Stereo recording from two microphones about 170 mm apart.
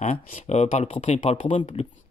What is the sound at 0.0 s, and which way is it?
Speech, 40° left (ahead or behind).